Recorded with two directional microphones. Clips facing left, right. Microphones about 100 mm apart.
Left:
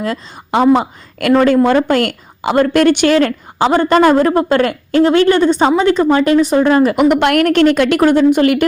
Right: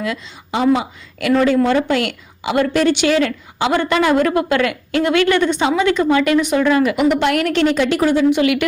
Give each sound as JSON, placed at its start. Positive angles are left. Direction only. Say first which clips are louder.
{"t": 0.0, "sound": "a woman's voice", "louder": "left 3 dB", "side_deg": 45}